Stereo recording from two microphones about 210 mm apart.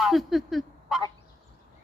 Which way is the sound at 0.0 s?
Centre (ahead or behind).